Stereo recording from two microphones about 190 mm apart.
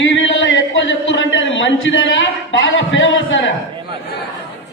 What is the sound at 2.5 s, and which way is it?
A man's voice, 80° left.